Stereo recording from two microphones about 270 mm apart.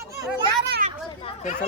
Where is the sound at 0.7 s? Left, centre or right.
Right.